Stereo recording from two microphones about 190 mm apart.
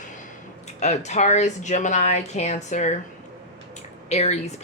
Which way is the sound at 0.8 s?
35° left (ahead or behind).